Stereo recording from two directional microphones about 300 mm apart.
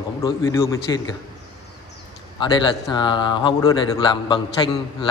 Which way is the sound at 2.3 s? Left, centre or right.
Centre.